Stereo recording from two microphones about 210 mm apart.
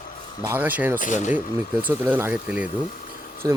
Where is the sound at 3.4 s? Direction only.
15° right (ahead or behind).